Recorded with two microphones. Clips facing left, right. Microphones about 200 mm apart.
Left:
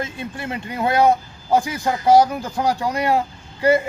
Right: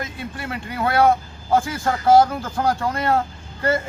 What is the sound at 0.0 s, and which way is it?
Speech, 25° left (ahead or behind).